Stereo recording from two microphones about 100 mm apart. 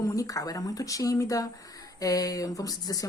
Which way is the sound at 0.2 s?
35° left (ahead or behind).